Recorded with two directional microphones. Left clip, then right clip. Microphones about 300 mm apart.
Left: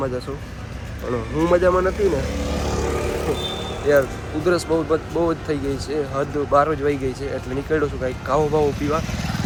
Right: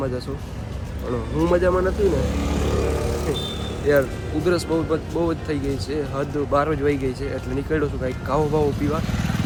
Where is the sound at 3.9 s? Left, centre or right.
Centre.